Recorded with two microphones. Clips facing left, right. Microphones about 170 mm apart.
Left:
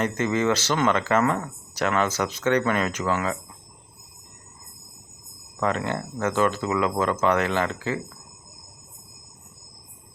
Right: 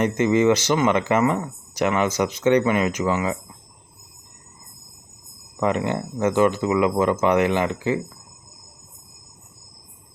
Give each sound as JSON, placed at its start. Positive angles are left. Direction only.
{"t": 0.0, "sound": "speech", "side_deg": -15}
{"t": 5.5, "sound": "speech", "side_deg": -15}